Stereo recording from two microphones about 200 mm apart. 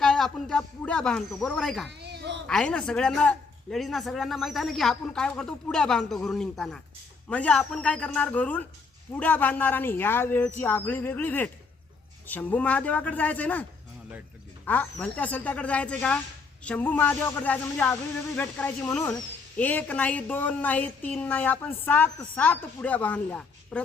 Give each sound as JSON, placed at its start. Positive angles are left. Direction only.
{"t": 0.0, "sound": "speech", "side_deg": 0}
{"t": 2.0, "sound": "a sound", "side_deg": -60}
{"t": 2.5, "sound": "a woman's voice", "side_deg": 5}